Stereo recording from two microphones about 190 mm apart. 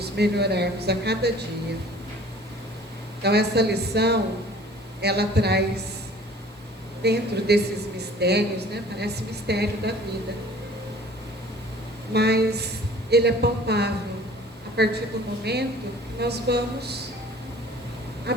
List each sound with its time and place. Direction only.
0.0 s a woman's voice: 60° right (ahead or behind)
3.2 s a woman's voice: 60° right (ahead or behind)
7.0 s a woman's voice: 60° right (ahead or behind)
12.1 s a woman's voice: 60° right (ahead or behind)
18.3 s quack: 60° right (ahead or behind)